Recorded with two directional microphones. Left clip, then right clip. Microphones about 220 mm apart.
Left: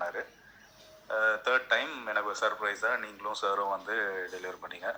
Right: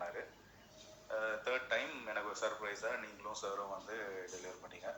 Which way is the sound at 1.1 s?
20° left (ahead or behind).